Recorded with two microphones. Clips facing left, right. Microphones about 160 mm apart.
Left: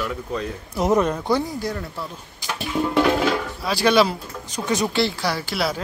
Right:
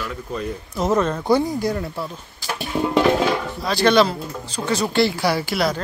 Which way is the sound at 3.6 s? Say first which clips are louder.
Right 2 dB; 5° left (ahead or behind).